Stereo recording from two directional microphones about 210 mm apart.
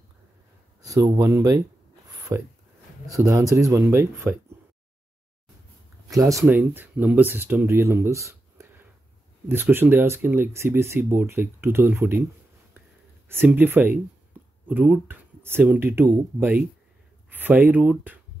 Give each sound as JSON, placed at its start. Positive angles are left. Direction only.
{"t": 0.8, "sound": "speech", "side_deg": -15}
{"t": 6.1, "sound": "speech", "side_deg": -15}
{"t": 13.3, "sound": "speech", "side_deg": -10}